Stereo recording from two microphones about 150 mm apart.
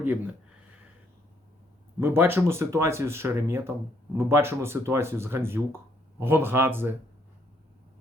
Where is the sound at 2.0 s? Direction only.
15° right (ahead or behind).